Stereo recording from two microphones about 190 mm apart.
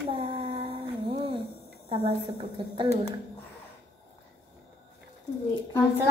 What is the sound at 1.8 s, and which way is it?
A woman's voice, 30° right (ahead or behind).